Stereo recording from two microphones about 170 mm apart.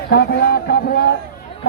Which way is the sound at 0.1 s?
70° left (ahead or behind).